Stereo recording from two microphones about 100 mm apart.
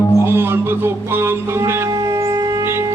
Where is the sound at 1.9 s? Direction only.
40° right (ahead or behind).